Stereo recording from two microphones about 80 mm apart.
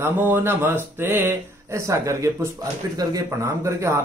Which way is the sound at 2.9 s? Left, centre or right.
Right.